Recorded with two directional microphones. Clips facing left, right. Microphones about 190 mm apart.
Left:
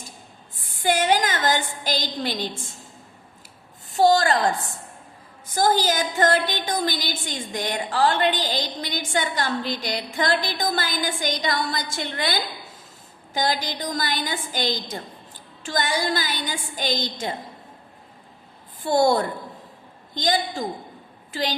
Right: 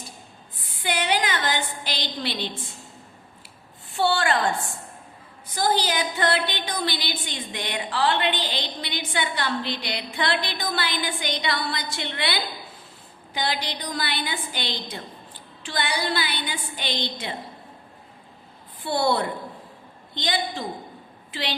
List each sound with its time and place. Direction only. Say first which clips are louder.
0.7 s a woman's voice: left 5 dB; 45° left (ahead or behind)
3.9 s a woman's voice: left 5 dB; 40° left (ahead or behind)
18.8 s a woman's voice: left 4 dB; 45° left (ahead or behind)